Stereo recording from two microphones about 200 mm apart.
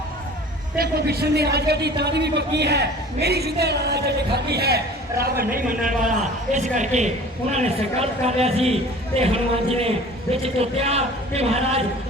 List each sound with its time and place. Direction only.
0.8 s a man's voice: 50° right (ahead or behind); by 11.8 s 30° right (ahead or behind)